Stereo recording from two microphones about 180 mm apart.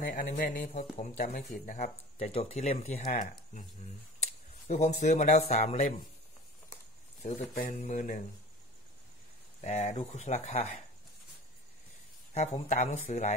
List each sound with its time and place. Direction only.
0.0 s speech: 50° left (ahead or behind)
4.6 s speech: 40° left (ahead or behind)
7.5 s speech: 50° left (ahead or behind)
9.6 s speech: 40° left (ahead or behind)
12.4 s speech: 40° left (ahead or behind)